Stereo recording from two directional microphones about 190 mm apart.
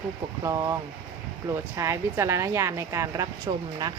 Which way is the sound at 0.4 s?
20° right (ahead or behind).